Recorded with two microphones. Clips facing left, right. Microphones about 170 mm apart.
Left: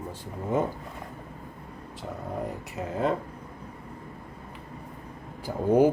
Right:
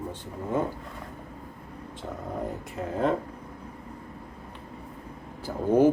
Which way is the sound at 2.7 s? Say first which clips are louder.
Right 1 dB; 5° left (ahead or behind).